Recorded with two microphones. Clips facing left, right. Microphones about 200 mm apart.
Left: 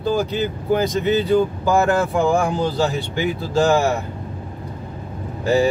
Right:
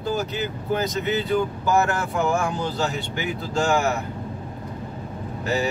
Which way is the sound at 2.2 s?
35° left (ahead or behind).